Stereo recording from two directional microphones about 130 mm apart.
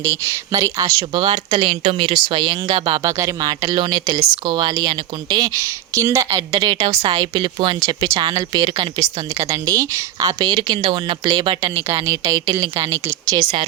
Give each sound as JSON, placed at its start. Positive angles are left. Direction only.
{"t": 0.0, "sound": "speech", "side_deg": -25}
{"t": 1.6, "sound": "speech", "side_deg": -50}
{"t": 2.1, "sound": "speech", "side_deg": -35}
{"t": 7.8, "sound": "speech", "side_deg": -25}
{"t": 10.5, "sound": "speech", "side_deg": -40}
{"t": 13.2, "sound": "speech", "side_deg": -35}